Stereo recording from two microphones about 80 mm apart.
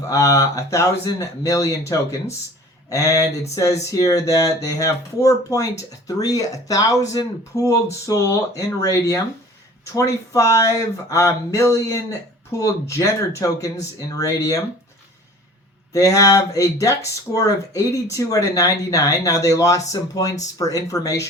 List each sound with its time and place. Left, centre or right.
0.1 s speech: left
15.9 s speech: left